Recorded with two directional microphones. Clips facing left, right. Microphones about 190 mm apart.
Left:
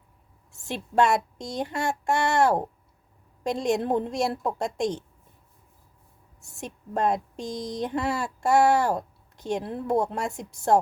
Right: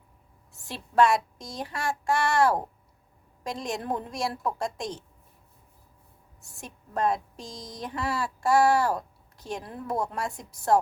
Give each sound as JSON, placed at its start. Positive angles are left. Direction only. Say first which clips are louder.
{"t": 0.7, "sound": "speech", "louder": "even", "side_deg": 25}
{"t": 6.6, "sound": "speech", "louder": "left 2 dB", "side_deg": 25}